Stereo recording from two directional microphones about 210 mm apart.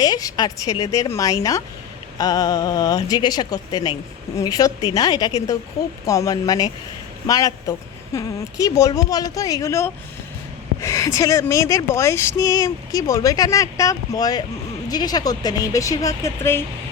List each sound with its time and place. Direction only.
0.0 s a woman's voice: 15° left (ahead or behind)